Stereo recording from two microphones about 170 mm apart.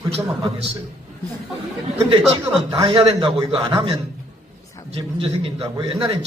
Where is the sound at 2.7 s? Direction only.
30° right (ahead or behind).